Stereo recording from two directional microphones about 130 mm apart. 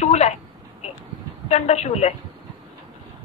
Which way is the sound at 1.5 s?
60° left (ahead or behind).